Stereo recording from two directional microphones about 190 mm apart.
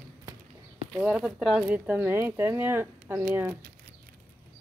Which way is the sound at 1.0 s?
5° right (ahead or behind).